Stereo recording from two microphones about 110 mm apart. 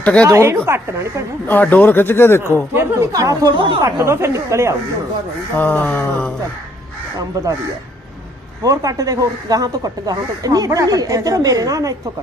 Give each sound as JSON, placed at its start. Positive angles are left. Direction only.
{"t": 0.0, "sound": "a woman's voice", "side_deg": 10}
{"t": 0.3, "sound": "a woman's voice", "side_deg": -25}
{"t": 1.5, "sound": "speech", "side_deg": 15}
{"t": 2.7, "sound": "speech", "side_deg": -30}
{"t": 3.5, "sound": "speech", "side_deg": -50}
{"t": 3.8, "sound": "a woman's voice", "side_deg": -25}
{"t": 5.5, "sound": "speech", "side_deg": 15}
{"t": 7.3, "sound": "speech", "side_deg": -30}
{"t": 8.6, "sound": "speech", "side_deg": -30}